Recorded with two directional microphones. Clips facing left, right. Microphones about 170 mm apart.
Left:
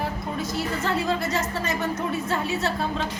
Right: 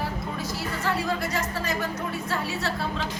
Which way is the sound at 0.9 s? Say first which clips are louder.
Left 3 dB; 25° left (ahead or behind).